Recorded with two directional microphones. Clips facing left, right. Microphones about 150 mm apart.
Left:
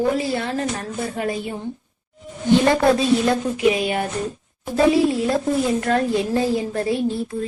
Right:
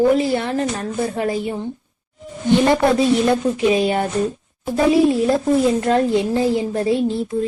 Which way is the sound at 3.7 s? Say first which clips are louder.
Right 4 dB; 30° right (ahead or behind).